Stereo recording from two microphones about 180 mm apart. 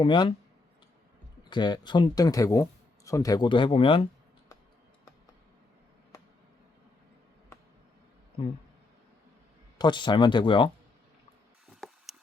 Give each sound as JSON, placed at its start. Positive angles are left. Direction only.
{"t": 0.0, "sound": "speech", "side_deg": 25}
{"t": 1.5, "sound": "speech", "side_deg": 25}
{"t": 9.7, "sound": "speech", "side_deg": 25}
{"t": 11.8, "sound": "a sound", "side_deg": 5}